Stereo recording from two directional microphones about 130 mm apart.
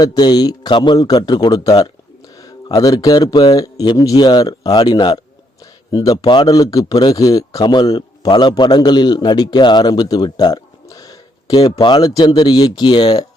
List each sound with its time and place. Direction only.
0.0 s speech: 35° left (ahead or behind)
11.5 s speech: 40° left (ahead or behind)